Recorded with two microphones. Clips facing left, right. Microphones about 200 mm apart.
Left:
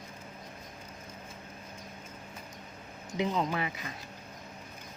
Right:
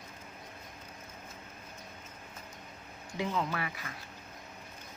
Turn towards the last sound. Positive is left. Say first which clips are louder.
# left 3 dB
turn(degrees=20)  # may be behind; listen again after turning